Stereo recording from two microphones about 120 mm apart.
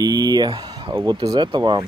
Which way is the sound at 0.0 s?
35° right (ahead or behind).